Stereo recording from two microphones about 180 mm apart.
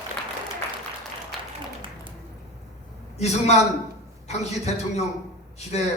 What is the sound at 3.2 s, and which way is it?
A man's voice, 35° left (ahead or behind).